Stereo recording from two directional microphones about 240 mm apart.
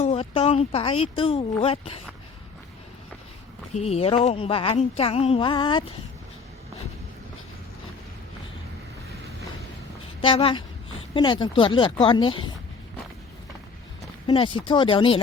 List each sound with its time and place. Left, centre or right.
0.0 s speech: left
3.8 s speech: left
10.2 s speech: left
14.3 s speech: left